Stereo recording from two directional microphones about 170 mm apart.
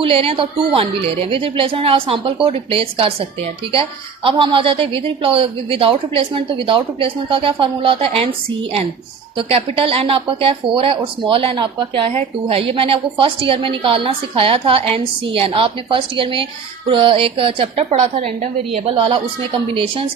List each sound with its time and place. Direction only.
0.0 s speech: 35° right (ahead or behind)